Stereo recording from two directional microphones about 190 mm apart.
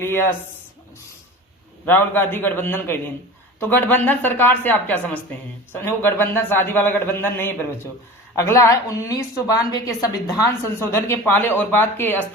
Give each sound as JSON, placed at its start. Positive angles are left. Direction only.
{"t": 0.0, "sound": "a woman's voice", "side_deg": 10}
{"t": 1.8, "sound": "a woman's voice", "side_deg": 10}